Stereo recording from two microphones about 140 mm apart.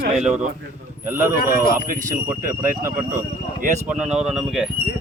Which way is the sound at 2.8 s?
15° right (ahead or behind).